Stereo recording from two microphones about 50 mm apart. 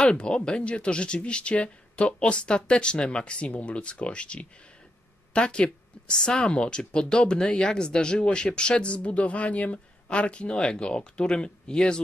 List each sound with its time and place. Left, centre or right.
0.0 s speech: centre